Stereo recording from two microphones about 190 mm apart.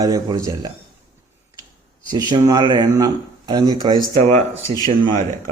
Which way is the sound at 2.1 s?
20° right (ahead or behind).